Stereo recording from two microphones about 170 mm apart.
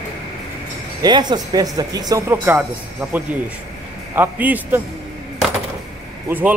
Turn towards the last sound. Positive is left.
turn(degrees=-10)  # may be behind; listen again after turning